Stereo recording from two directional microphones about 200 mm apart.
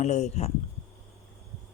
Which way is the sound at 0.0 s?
35° left (ahead or behind).